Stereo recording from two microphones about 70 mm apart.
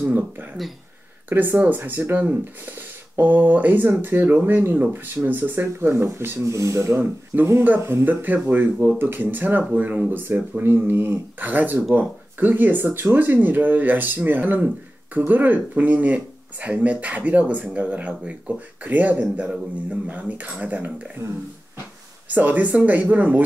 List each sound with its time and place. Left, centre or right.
0.0 s speech: right
1.6 s speech: right
7.3 s speech: right
22.3 s speech: right